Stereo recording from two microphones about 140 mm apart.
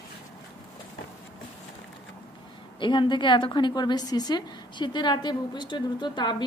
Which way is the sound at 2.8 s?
35° left (ahead or behind).